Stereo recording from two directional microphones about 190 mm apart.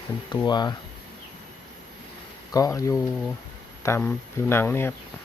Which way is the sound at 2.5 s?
20° left (ahead or behind).